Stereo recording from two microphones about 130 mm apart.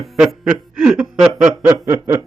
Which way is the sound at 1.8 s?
20° right (ahead or behind).